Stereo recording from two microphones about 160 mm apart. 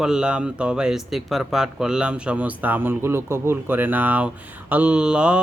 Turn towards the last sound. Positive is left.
turn(degrees=-5)  # may be behind; listen again after turning